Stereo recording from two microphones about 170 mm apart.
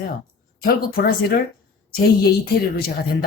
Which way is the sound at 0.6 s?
60° left (ahead or behind).